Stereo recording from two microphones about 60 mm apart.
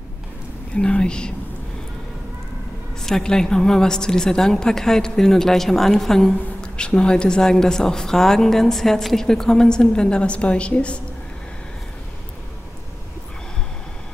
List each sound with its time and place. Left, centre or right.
0.7 s a woman's voice: centre
3.0 s a woman's voice: centre